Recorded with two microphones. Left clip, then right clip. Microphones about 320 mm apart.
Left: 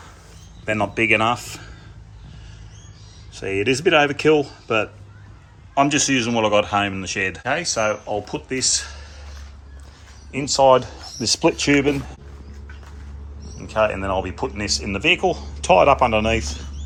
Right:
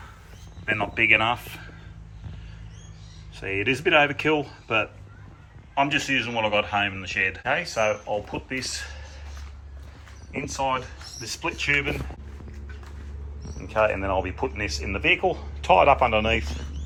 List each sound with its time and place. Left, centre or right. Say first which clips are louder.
0.6 s speech: left 2 dB; centre
3.3 s speech: left 4 dB; centre
11.3 s speech: left 7 dB; left
13.7 s speech: left 3 dB; centre